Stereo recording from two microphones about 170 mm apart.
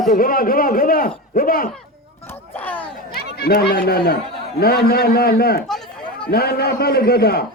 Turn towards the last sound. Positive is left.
turn(degrees=65)  # may be behind; listen again after turning